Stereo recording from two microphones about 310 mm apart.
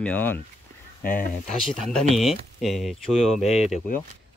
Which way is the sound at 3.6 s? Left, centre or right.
Left.